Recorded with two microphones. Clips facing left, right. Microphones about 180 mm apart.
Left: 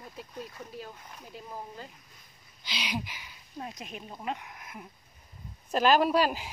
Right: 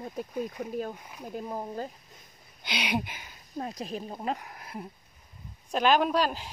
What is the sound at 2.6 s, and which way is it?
Speech, 60° right (ahead or behind).